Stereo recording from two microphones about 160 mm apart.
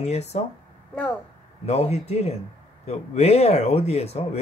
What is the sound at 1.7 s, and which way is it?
Speech, 40° left (ahead or behind).